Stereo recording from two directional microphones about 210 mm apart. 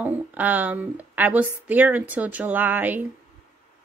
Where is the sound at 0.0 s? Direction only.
10° right (ahead or behind).